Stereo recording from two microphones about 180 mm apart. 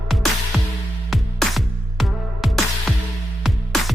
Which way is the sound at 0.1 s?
Centre (ahead or behind).